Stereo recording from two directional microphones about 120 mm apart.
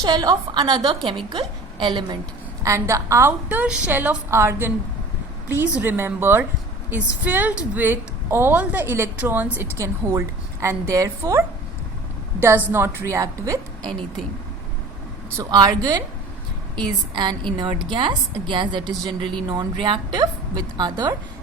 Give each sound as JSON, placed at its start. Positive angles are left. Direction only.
{"t": 0.0, "sound": "a woman's voice", "side_deg": -30}
{"t": 2.6, "sound": "a woman's voice", "side_deg": -25}
{"t": 12.4, "sound": "a woman's voice", "side_deg": -15}
{"t": 15.4, "sound": "a woman's voice", "side_deg": -30}